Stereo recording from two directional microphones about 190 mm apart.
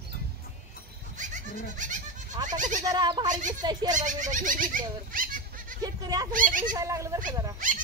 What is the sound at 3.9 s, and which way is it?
Speech, 40° right (ahead or behind).